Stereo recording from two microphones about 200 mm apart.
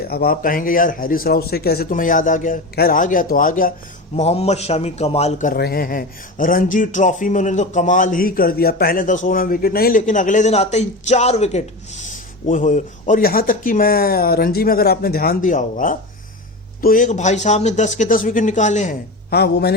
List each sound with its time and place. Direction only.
0.1 s speech: 50° left (ahead or behind)
4.2 s a man's voice: 30° left (ahead or behind)
5.5 s a man's voice: 50° left (ahead or behind)
19.3 s speech: 55° left (ahead or behind)